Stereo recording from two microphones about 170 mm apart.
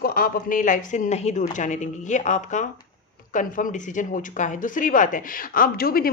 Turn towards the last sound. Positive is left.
turn(degrees=60)  # may be behind; listen again after turning